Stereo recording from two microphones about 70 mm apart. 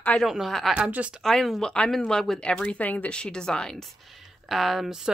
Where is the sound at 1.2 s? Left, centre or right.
Centre.